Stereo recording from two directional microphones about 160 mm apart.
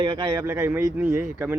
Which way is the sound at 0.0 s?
30° right (ahead or behind).